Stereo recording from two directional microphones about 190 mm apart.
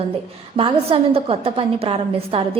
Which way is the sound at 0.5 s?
30° right (ahead or behind).